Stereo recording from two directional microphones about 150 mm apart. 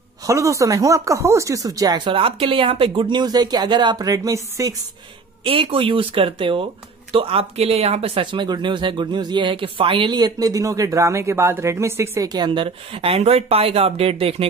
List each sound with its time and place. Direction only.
0.3 s speech: 20° right (ahead or behind)
5.4 s speech: 40° right (ahead or behind)